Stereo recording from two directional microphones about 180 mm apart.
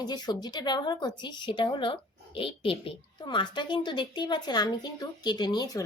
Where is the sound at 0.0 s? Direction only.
25° left (ahead or behind).